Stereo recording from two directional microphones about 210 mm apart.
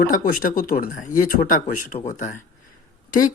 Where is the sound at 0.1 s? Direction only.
40° left (ahead or behind).